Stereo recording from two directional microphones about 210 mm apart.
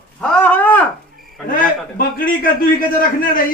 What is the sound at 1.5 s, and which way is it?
A man's voice, 45° left (ahead or behind).